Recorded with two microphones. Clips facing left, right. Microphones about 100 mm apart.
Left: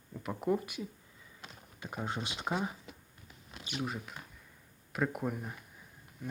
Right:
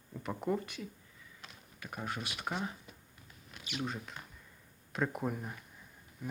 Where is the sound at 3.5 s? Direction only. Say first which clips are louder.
Left 1 dB; 35° left (ahead or behind).